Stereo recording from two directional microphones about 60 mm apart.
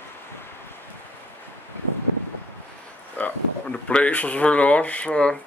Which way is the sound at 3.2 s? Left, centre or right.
Left.